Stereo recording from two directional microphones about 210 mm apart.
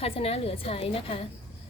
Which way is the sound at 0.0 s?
30° left (ahead or behind).